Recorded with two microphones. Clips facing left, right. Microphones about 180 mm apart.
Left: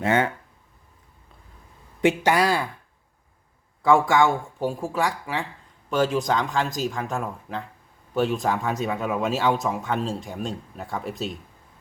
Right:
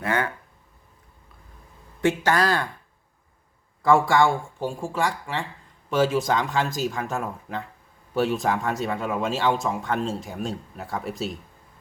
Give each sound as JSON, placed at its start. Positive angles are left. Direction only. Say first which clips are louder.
{"t": 0.0, "sound": "speech", "louder": "left 4 dB", "side_deg": 20}
{"t": 2.0, "sound": "speech", "louder": "left 2 dB", "side_deg": 15}
{"t": 3.8, "sound": "speech", "louder": "even", "side_deg": 0}